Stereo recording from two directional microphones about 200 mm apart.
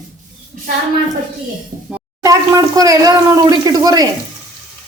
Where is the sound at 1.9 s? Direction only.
15° right (ahead or behind).